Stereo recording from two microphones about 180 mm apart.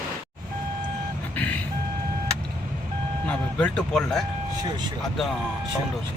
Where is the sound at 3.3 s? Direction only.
5° left (ahead or behind).